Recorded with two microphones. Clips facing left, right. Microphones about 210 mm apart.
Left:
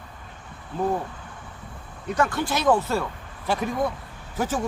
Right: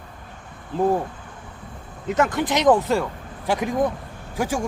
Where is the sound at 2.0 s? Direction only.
20° right (ahead or behind).